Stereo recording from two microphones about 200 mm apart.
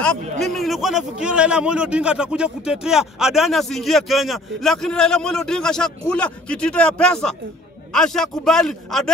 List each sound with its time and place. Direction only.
0.0 s a man's voice: centre (ahead or behind)